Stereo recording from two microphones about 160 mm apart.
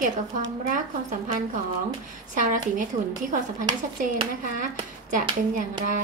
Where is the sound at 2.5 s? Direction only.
55° right (ahead or behind).